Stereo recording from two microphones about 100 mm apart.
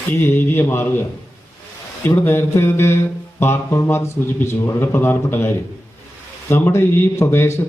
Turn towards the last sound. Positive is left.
turn(degrees=25)  # may be behind; listen again after turning